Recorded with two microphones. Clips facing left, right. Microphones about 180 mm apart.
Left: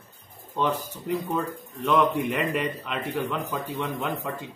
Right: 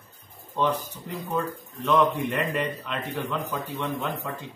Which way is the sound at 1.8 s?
5° left (ahead or behind).